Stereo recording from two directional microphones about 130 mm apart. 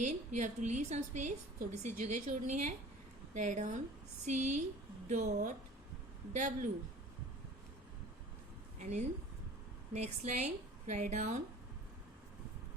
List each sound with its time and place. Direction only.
0.0 s a woman's voice: 70° right (ahead or behind)
8.8 s a woman's voice: 65° right (ahead or behind)